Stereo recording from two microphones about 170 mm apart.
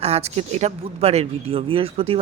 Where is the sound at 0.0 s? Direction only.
35° right (ahead or behind).